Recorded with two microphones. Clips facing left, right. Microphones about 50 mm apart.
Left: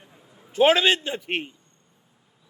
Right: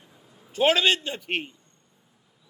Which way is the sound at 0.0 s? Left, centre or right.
Left.